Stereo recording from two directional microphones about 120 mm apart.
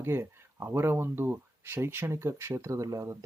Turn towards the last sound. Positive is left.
turn(degrees=-25)  # may be behind; listen again after turning